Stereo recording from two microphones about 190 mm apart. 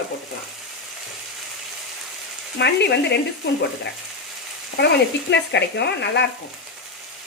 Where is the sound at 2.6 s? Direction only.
60° left (ahead or behind).